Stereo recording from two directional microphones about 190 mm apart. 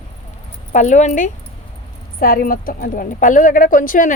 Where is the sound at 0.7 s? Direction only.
40° left (ahead or behind).